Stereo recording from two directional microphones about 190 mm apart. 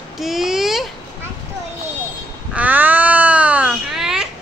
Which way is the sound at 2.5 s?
10° right (ahead or behind).